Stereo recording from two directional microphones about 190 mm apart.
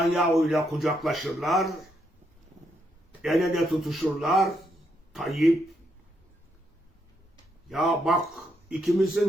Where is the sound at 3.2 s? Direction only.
Centre (ahead or behind).